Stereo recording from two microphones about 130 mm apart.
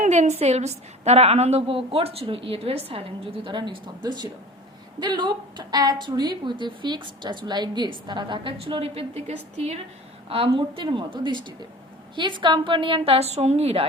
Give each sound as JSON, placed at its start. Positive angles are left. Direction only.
{"t": 0.0, "sound": "a woman's voice", "side_deg": -65}
{"t": 10.2, "sound": "a woman's voice", "side_deg": -45}